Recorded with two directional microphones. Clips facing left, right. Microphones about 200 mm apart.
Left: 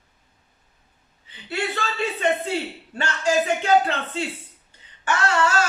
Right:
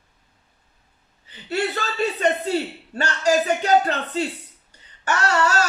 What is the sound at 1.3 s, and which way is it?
Speech, 40° right (ahead or behind).